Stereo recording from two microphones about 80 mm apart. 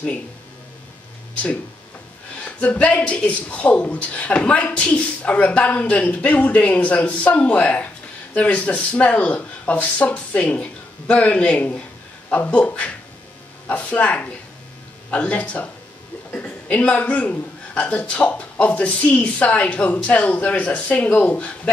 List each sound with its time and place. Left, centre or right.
2.4 s a man's voice: centre